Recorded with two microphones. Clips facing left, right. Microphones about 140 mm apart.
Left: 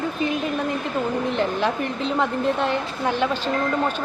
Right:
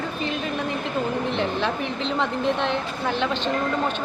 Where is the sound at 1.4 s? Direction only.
10° left (ahead or behind).